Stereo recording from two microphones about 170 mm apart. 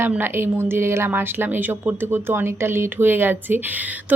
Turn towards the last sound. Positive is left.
turn(degrees=-10)  # may be behind; listen again after turning